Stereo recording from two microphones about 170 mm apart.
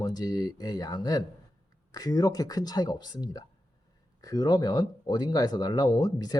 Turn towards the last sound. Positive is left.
turn(degrees=20)  # may be behind; listen again after turning